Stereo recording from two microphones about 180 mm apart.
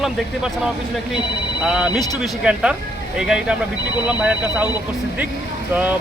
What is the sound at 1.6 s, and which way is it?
Speech, 5° right (ahead or behind).